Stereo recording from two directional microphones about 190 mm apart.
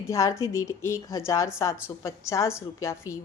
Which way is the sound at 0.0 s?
15° left (ahead or behind).